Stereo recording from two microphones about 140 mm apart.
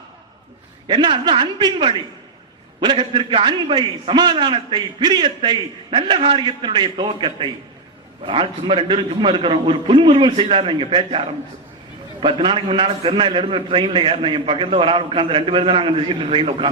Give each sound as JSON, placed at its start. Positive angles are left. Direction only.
{"t": 0.9, "sound": "a man's voice", "side_deg": -35}